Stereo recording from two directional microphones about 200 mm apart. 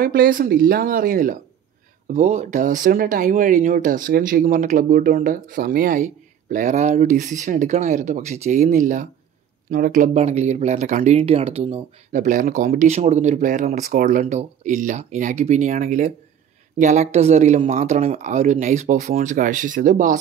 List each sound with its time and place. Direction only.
0.0 s speech: 45° right (ahead or behind)
2.0 s speech: 35° right (ahead or behind)